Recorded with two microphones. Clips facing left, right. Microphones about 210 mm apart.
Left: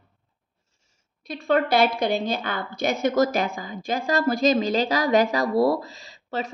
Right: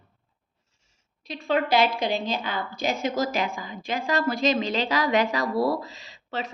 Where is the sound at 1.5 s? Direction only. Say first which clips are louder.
Left 2 dB; 55° left (ahead or behind).